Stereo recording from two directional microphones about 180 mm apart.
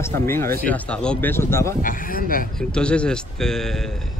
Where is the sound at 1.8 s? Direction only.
50° left (ahead or behind).